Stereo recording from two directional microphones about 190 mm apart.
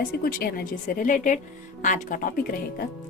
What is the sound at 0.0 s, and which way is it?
Speech, 50° left (ahead or behind).